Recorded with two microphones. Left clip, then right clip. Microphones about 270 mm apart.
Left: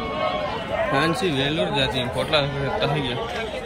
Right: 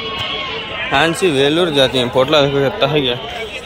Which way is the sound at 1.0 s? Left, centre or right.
Centre.